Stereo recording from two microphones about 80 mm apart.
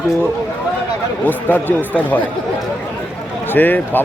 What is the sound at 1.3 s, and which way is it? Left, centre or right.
Speech, left.